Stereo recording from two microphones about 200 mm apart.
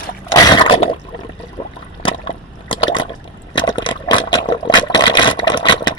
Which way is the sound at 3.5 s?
20° left (ahead or behind).